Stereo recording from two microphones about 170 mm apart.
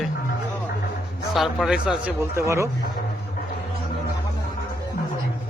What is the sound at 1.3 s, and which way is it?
Speech, centre (ahead or behind).